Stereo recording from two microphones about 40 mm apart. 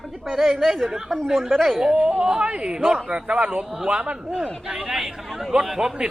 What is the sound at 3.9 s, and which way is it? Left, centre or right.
Speech, right.